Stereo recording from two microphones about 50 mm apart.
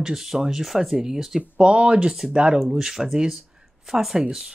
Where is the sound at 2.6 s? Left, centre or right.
Centre.